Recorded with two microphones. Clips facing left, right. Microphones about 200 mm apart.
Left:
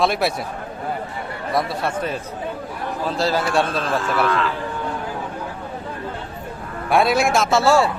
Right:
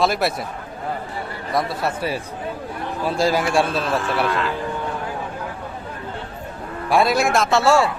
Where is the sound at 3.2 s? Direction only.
15° right (ahead or behind).